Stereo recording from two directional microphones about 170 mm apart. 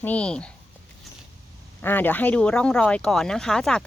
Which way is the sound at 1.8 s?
10° left (ahead or behind).